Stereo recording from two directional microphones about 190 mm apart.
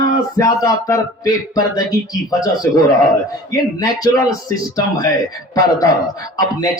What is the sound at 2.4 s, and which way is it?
Speech, 20° left (ahead or behind).